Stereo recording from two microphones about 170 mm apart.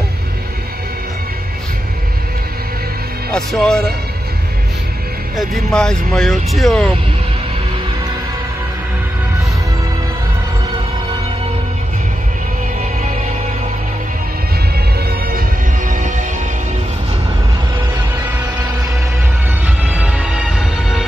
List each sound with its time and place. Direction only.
3.3 s speech: 5° left (ahead or behind)
5.3 s speech: centre (ahead or behind)
15.0 s music: 60° right (ahead or behind)
19.6 s music: 10° right (ahead or behind)